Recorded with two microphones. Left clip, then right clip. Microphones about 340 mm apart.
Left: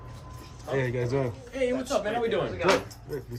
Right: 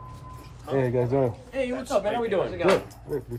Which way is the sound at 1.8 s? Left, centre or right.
Right.